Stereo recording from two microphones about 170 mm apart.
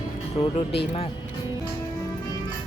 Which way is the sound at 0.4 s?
40° left (ahead or behind).